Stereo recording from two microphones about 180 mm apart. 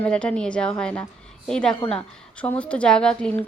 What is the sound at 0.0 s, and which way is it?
A woman's voice, 5° left (ahead or behind).